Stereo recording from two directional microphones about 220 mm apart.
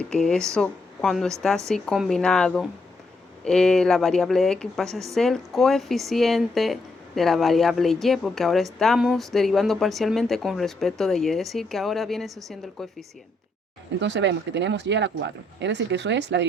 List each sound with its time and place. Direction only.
0.1 s a woman's voice: 5° left (ahead or behind)
14.0 s speech: 55° right (ahead or behind)